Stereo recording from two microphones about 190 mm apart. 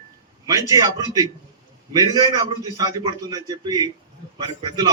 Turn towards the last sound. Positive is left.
turn(degrees=-20)  # may be behind; listen again after turning